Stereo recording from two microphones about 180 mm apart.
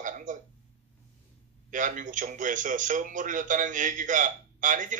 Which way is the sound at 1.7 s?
45° right (ahead or behind).